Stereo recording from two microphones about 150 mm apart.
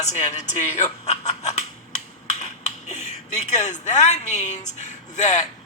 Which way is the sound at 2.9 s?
50° left (ahead or behind).